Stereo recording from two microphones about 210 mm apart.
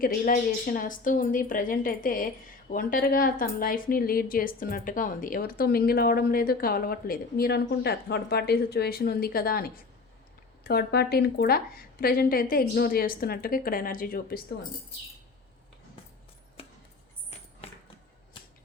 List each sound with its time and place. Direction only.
0.0 s a woman's voice: 40° left (ahead or behind)
16.6 s chopping: 30° left (ahead or behind)